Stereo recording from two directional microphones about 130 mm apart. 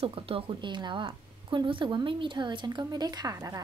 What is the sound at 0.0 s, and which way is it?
A woman's voice, 45° right (ahead or behind).